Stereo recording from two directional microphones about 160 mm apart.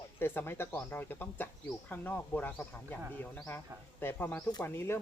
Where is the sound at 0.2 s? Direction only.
15° left (ahead or behind).